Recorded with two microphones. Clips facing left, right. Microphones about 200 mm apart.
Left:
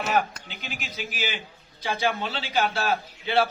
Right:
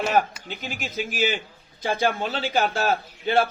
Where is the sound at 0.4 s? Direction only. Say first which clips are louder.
Right 5 dB; 50° right (ahead or behind).